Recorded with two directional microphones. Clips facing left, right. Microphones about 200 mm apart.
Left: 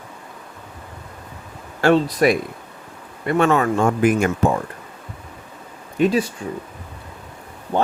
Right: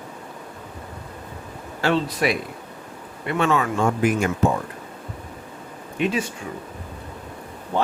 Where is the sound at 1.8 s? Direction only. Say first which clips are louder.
Left 6 dB; 50° left (ahead or behind).